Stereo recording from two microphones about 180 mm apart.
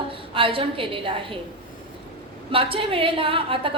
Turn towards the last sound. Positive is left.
turn(degrees=-30)  # may be behind; listen again after turning